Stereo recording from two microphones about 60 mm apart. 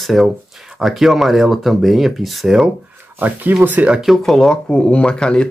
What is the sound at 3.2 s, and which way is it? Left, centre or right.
Speech, right.